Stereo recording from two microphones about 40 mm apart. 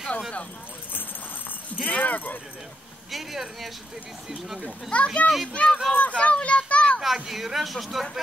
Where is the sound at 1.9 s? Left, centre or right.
Left.